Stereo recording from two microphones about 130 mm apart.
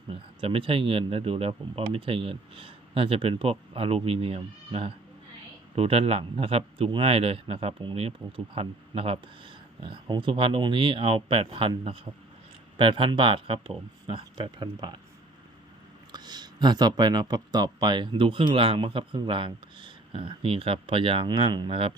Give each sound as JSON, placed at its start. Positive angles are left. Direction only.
{"t": 0.1, "sound": "speech", "side_deg": -45}
{"t": 16.1, "sound": "speech", "side_deg": -35}